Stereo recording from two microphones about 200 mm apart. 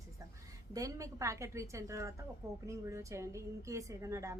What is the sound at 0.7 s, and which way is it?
A woman's voice, 15° right (ahead or behind).